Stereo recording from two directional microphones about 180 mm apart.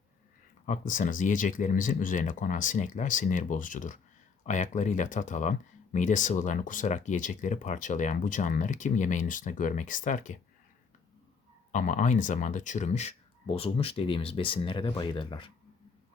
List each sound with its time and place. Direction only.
0.6 s speech: 45° left (ahead or behind)
11.7 s speech: 45° left (ahead or behind); by 15.5 s 25° left (ahead or behind)